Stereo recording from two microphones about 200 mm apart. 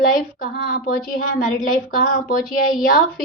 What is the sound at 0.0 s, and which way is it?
Speech, 45° left (ahead or behind).